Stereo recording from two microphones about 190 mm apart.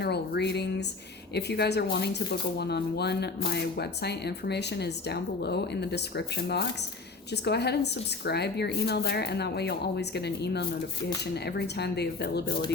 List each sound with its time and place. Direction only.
0.0 s speech: 60° left (ahead or behind)